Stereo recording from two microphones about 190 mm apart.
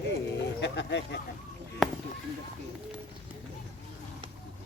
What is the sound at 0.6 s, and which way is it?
Speech, 65° left (ahead or behind).